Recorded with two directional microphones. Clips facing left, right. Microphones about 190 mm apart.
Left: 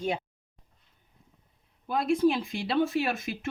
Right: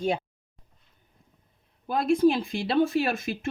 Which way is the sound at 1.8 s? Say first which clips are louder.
Right 3 dB; 40° right (ahead or behind).